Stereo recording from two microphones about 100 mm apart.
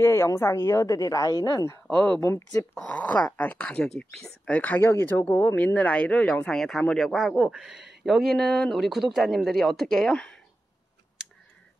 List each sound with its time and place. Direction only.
0.0 s a woman's voice: 25° left (ahead or behind)
2.0 s speech: 15° left (ahead or behind)
2.2 s a woman's voice: 25° left (ahead or behind)
2.8 s speech: 15° left (ahead or behind)